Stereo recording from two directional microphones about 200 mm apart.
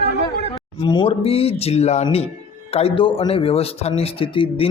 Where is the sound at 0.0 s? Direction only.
55° left (ahead or behind).